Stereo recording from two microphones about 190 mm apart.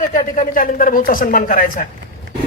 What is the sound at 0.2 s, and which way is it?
Speech, 45° left (ahead or behind).